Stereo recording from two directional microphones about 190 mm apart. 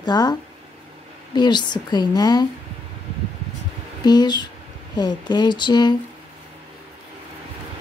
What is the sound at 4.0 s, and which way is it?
Speech, 20° left (ahead or behind).